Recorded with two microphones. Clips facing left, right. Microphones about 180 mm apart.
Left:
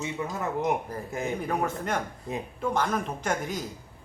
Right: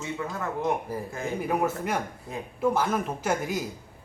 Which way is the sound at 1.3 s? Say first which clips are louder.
Right 6 dB; 5° right (ahead or behind).